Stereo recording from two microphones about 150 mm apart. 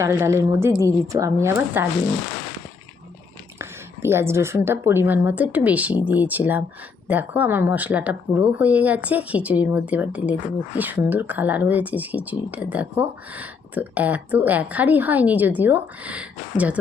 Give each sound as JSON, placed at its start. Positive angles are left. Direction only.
{"t": 0.0, "sound": "a woman's voice", "side_deg": -15}
{"t": 3.6, "sound": "speech", "side_deg": -15}